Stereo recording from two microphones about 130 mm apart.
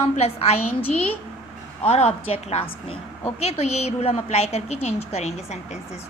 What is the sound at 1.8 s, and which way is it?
A woman's voice, 55° left (ahead or behind).